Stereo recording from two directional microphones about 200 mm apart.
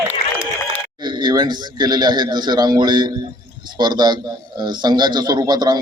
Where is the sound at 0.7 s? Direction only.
20° right (ahead or behind).